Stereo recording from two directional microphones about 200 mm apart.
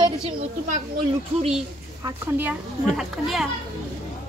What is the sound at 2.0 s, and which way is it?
A woman's voice, 10° right (ahead or behind).